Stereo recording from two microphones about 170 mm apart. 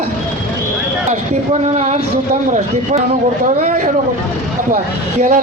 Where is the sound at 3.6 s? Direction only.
45° right (ahead or behind).